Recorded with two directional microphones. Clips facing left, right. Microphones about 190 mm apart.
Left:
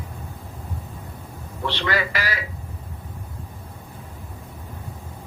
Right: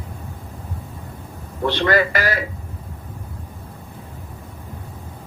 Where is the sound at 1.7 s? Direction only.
45° right (ahead or behind).